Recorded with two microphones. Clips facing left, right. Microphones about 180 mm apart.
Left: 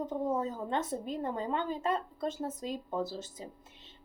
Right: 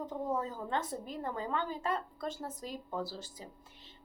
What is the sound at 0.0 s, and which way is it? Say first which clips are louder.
Speech: left 3 dB; 20° left (ahead or behind).